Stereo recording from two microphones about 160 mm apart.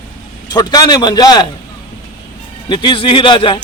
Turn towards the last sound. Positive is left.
turn(degrees=30)  # may be behind; listen again after turning